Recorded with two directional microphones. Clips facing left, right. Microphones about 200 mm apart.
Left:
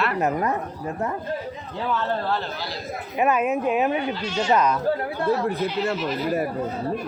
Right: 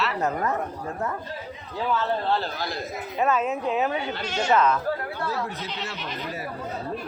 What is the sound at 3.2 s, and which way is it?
Speech, 15° left (ahead or behind).